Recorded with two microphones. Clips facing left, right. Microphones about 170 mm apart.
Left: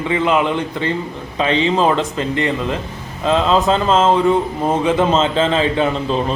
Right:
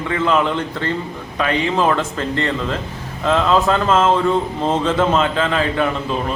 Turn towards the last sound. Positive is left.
turn(degrees=25)  # may be behind; listen again after turning